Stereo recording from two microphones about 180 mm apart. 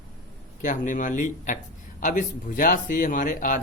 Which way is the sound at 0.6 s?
45° left (ahead or behind).